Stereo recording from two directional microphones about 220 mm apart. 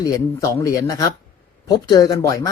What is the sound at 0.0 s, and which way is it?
Speech, 15° left (ahead or behind).